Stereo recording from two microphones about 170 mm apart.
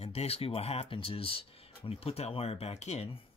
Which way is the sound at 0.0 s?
35° left (ahead or behind).